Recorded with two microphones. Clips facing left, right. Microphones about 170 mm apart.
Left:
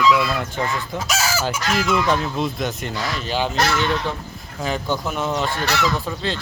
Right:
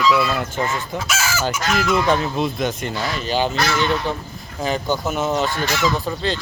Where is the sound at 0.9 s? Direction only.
40° left (ahead or behind).